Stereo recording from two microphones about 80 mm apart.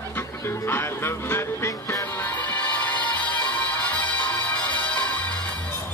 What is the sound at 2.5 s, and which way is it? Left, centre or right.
Music, centre.